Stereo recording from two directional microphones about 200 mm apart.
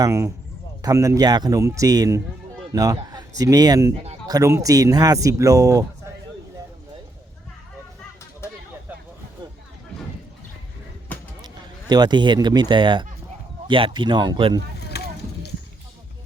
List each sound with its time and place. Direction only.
0.0 s speech: 15° right (ahead or behind)
11.4 s speech: 20° right (ahead or behind)
14.8 s vehicle: 55° left (ahead or behind)